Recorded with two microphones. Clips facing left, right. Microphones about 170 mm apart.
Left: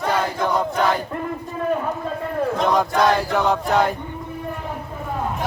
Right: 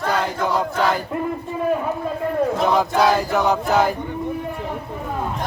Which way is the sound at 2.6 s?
5° right (ahead or behind).